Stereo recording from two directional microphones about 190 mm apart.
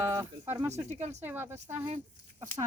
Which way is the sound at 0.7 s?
35° right (ahead or behind).